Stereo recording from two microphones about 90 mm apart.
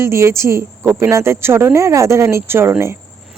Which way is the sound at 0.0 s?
30° right (ahead or behind).